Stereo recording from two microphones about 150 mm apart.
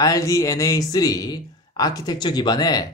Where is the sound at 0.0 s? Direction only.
20° left (ahead or behind).